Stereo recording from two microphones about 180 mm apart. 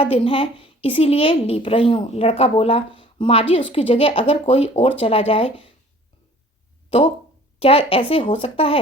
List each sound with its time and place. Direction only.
0.0 s a woman's voice: 30° left (ahead or behind)
7.6 s a woman's voice: 30° left (ahead or behind)